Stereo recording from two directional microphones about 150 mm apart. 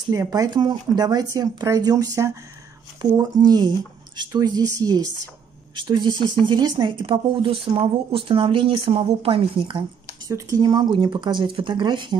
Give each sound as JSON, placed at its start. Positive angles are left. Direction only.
{"t": 0.0, "sound": "speech", "side_deg": -25}
{"t": 10.2, "sound": "speech", "side_deg": -25}